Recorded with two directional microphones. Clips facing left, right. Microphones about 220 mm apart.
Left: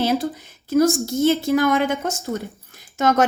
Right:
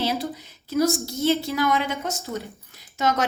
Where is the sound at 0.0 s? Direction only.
50° left (ahead or behind).